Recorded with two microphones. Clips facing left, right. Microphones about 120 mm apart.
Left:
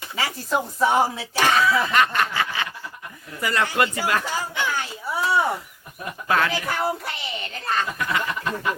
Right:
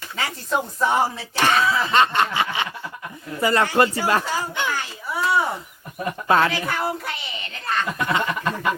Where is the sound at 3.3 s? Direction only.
30° right (ahead or behind).